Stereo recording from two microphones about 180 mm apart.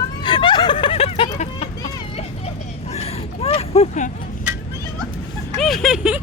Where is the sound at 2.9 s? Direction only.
35° left (ahead or behind).